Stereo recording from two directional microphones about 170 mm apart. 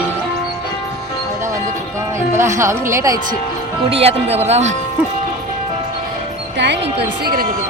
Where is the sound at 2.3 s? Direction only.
15° right (ahead or behind).